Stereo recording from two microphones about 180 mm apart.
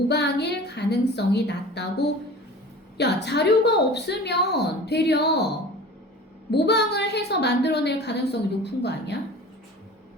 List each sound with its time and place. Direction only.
0.1 s a woman's voice: 70° left (ahead or behind)
3.0 s a woman's voice: 70° left (ahead or behind)
6.5 s a woman's voice: 70° left (ahead or behind)